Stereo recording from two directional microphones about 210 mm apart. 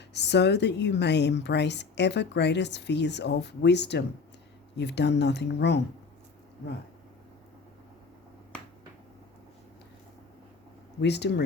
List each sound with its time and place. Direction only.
0.1 s a woman's voice: 55° left (ahead or behind)
11.0 s speech: 55° left (ahead or behind)